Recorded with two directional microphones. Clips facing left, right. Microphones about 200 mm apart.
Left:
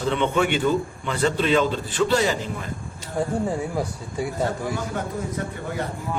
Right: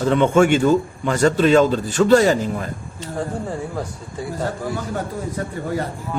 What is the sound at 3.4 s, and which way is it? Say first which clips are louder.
Speech: left 1 dB; 10° left (ahead or behind).